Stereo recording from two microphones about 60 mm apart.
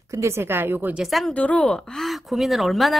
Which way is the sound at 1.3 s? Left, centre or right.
Left.